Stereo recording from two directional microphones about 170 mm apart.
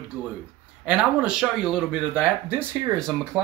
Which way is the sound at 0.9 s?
5° right (ahead or behind).